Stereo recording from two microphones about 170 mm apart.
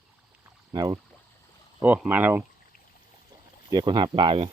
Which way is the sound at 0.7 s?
25° right (ahead or behind).